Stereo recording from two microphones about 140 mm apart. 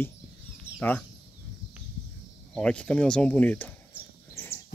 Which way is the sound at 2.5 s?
10° left (ahead or behind).